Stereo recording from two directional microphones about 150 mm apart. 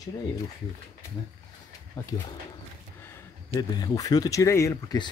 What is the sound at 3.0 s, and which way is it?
Speech, 20° left (ahead or behind).